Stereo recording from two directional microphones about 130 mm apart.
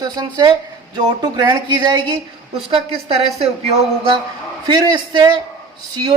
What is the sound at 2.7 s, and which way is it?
Speech, 50° right (ahead or behind).